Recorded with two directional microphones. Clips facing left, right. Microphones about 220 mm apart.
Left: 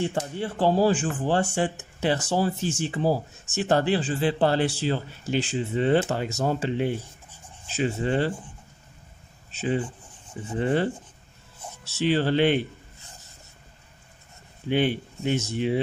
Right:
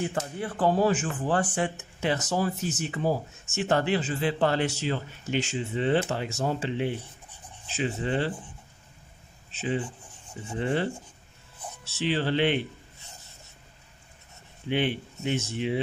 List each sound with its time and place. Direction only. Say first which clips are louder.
0.0 s speech: left 3 dB; 30° left (ahead or behind)
9.5 s speech: left 3 dB; 40° left (ahead or behind)
14.7 s speech: left 3 dB; 40° left (ahead or behind)